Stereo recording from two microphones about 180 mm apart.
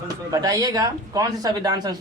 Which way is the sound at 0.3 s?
20° right (ahead or behind).